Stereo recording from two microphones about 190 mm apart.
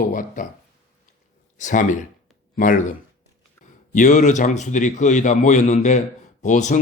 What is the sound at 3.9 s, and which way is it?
Speech, 40° left (ahead or behind).